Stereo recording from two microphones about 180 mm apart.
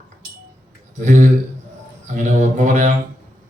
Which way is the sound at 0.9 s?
45° right (ahead or behind).